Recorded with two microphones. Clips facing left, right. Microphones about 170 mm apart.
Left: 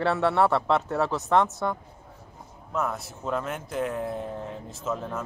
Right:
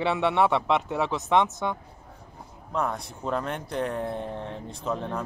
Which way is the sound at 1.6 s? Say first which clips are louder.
Left 1 dB; 5° right (ahead or behind).